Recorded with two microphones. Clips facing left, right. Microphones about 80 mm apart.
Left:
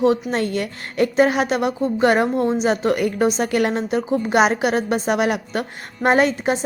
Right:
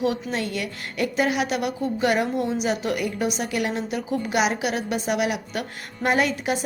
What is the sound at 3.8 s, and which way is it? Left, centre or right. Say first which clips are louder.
A woman's voice: left 6 dB; left.